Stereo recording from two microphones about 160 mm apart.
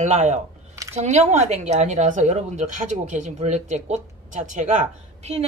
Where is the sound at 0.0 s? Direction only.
45° right (ahead or behind).